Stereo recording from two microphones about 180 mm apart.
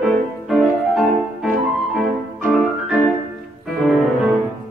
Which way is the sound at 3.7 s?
Centre (ahead or behind).